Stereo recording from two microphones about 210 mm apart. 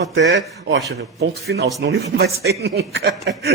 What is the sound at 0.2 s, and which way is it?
A man's voice, 60° right (ahead or behind).